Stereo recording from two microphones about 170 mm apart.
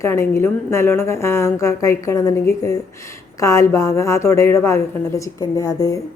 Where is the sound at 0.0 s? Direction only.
15° left (ahead or behind).